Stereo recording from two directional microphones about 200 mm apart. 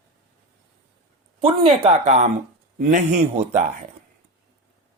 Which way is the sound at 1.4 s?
30° right (ahead or behind).